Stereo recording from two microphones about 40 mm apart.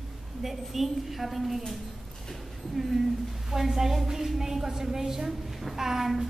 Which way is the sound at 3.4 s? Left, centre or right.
Centre.